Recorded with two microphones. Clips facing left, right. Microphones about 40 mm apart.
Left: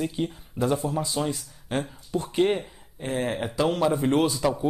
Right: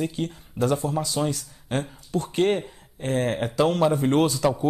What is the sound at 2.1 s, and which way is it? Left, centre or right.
Speech, left.